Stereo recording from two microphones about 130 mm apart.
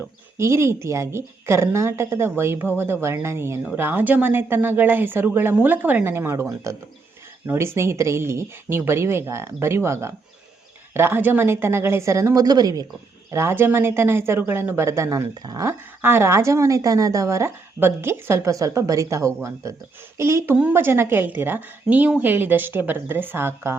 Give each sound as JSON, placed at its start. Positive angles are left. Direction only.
{"t": 0.0, "sound": "a woman's voice", "side_deg": -20}
{"t": 16.0, "sound": "a woman's voice", "side_deg": -15}